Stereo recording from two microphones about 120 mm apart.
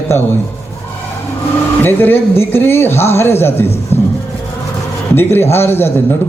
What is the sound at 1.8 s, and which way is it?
A man's voice, 15° left (ahead or behind).